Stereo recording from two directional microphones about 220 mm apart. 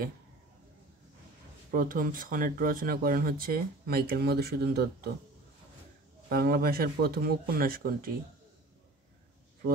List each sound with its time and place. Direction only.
1.7 s speech: 40° right (ahead or behind)
6.2 s speech: 45° right (ahead or behind)